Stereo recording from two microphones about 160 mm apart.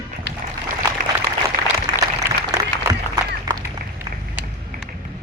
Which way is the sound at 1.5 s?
60° right (ahead or behind).